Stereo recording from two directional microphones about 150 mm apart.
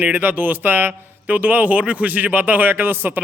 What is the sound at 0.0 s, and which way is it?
A man's voice, 10° right (ahead or behind).